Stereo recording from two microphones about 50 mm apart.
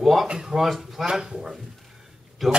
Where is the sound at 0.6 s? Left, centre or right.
Centre.